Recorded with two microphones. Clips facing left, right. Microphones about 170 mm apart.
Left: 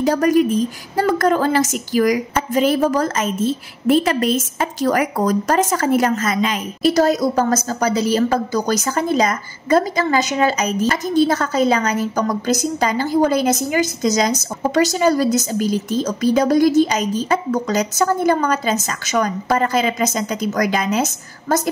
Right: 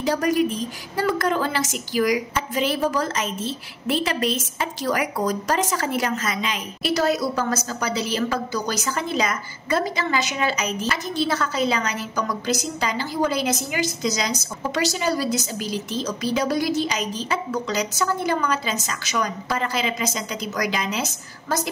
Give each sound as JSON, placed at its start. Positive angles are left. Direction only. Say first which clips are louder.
{"t": 0.0, "sound": "a woman's voice", "louder": "left 6 dB", "side_deg": 45}